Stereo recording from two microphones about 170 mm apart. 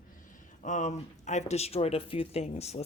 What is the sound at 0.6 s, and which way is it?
Speech, 45° left (ahead or behind).